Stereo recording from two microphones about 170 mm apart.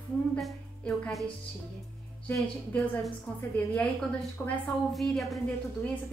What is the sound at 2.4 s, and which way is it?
Speech, centre (ahead or behind).